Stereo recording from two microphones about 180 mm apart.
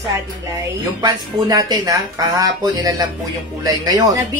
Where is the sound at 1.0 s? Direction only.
20° right (ahead or behind).